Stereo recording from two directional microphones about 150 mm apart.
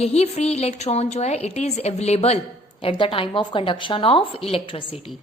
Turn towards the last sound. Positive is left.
turn(degrees=40)  # may be behind; listen again after turning